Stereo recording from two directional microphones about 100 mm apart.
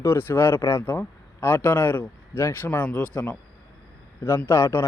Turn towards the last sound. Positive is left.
turn(degrees=25)  # may be behind; listen again after turning